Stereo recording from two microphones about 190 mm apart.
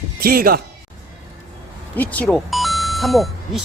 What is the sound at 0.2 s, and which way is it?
Speech, 50° right (ahead or behind).